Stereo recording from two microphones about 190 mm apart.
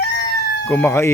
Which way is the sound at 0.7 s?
10° left (ahead or behind).